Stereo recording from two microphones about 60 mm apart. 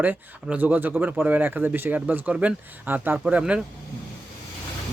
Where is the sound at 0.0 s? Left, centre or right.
Right.